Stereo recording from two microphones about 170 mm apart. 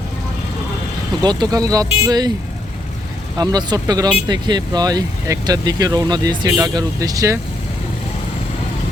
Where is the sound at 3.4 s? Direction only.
25° right (ahead or behind).